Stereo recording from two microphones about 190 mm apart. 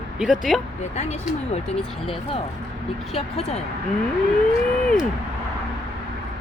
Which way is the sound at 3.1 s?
35° left (ahead or behind).